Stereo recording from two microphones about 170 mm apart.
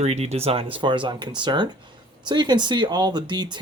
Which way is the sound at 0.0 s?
40° right (ahead or behind).